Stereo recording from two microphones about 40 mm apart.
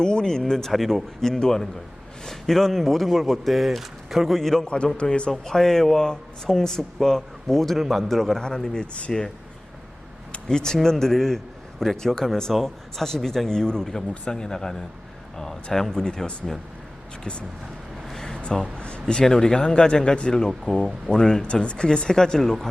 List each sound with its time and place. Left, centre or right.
0.0 s speech: centre
0.7 s speech: centre
1.2 s speech: centre
4.4 s speech: centre
4.9 s speech: left
5.3 s speech: centre
10.5 s speech: centre
18.1 s a sound: centre
18.8 s a sound: left
19.2 s speech: centre
19.6 s speech: left
20.7 s speech: centre
21.4 s speech: left